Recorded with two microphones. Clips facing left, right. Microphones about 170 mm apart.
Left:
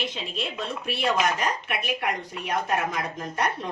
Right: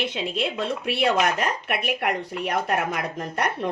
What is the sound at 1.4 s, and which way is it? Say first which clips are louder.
Speech: right 2 dB; 60° right (ahead or behind).